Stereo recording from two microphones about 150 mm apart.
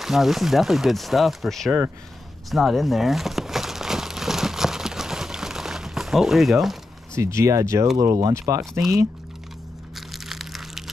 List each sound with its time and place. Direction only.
0.0 s speech: centre (ahead or behind)
2.5 s crumpling: centre (ahead or behind)
7.2 s speech: 20° right (ahead or behind)
9.9 s crushing: centre (ahead or behind)